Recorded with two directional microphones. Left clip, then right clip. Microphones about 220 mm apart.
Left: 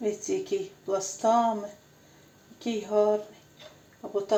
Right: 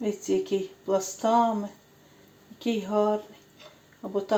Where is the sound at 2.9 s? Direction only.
25° right (ahead or behind).